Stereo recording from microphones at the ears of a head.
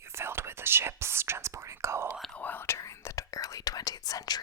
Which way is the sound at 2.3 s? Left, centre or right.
Left.